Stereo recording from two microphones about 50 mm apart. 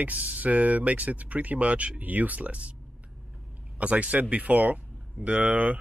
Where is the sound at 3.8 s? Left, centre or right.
Right.